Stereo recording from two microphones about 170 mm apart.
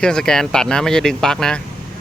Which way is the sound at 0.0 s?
5° left (ahead or behind).